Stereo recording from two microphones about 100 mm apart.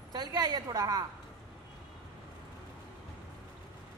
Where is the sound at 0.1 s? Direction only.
40° right (ahead or behind).